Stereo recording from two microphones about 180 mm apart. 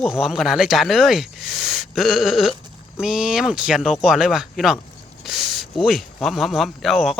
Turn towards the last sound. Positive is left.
turn(degrees=0)  # may be behind; listen again after turning